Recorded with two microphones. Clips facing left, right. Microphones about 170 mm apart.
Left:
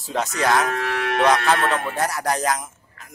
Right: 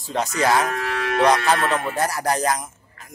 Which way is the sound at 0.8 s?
60° left (ahead or behind).